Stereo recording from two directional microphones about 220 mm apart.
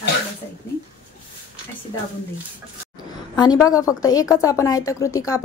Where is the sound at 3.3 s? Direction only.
15° left (ahead or behind).